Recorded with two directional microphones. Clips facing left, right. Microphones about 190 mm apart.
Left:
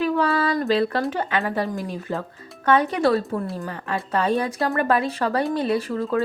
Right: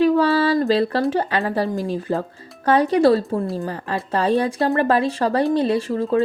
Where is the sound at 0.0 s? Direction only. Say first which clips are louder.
Right 5 dB; 30° right (ahead or behind).